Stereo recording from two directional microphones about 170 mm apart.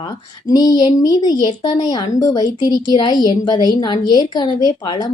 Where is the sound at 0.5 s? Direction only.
20° left (ahead or behind).